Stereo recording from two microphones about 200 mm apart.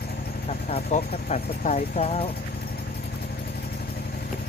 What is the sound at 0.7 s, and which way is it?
Speech, 35° left (ahead or behind).